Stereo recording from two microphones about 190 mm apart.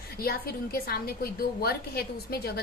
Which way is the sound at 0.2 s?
55° left (ahead or behind).